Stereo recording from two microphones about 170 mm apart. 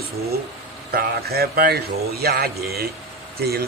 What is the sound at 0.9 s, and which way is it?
A man's voice, 65° right (ahead or behind).